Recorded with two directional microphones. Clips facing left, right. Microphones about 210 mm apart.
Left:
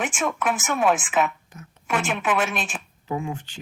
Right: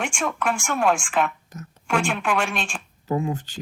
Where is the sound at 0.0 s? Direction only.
5° left (ahead or behind).